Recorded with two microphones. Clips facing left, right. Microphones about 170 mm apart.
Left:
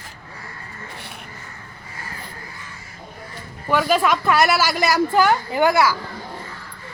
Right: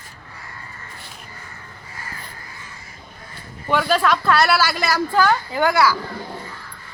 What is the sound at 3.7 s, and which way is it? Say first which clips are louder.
A woman's voice: even; 10° left (ahead or behind).